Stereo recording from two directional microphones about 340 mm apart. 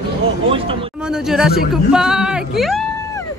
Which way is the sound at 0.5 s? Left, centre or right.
Centre.